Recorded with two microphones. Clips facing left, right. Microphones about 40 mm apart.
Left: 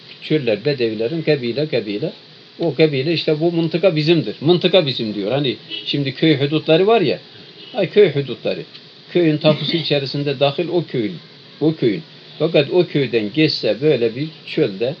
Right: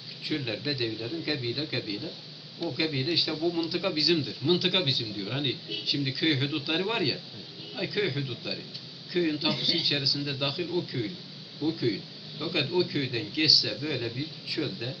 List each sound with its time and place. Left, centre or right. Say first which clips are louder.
0.2 s speech: left 15 dB; left